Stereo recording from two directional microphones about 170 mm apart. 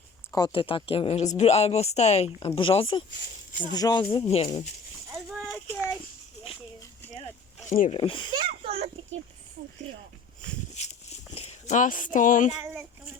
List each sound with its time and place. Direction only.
0.3 s speech: 25° left (ahead or behind)
4.3 s speech: 35° left (ahead or behind)
5.5 s speech: 5° right (ahead or behind)
7.9 s speech: 30° left (ahead or behind)
8.3 s a child's voice: 30° right (ahead or behind)
11.3 s speech: 40° left (ahead or behind)